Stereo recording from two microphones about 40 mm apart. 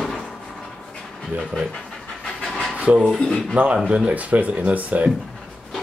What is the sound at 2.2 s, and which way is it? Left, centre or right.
Train, centre.